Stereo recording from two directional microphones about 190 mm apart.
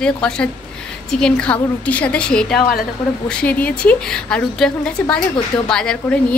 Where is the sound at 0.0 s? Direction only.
5° left (ahead or behind).